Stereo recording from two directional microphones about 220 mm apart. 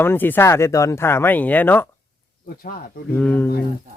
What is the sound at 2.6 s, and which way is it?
Speech, 40° left (ahead or behind).